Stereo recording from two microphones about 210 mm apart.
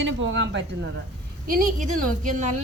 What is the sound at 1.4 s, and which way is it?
A woman's voice, 40° right (ahead or behind).